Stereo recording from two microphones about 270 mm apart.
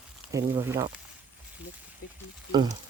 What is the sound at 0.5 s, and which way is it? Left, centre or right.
Speech, centre.